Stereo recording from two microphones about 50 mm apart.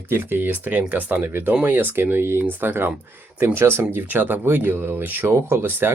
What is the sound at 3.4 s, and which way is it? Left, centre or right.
Speech, right.